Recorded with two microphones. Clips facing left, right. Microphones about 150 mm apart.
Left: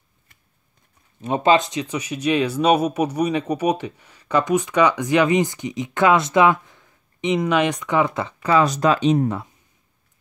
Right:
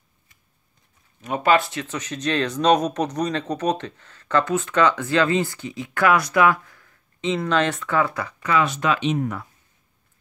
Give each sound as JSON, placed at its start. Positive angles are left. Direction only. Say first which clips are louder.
{"t": 1.2, "sound": "speech", "louder": "left 2 dB", "side_deg": 25}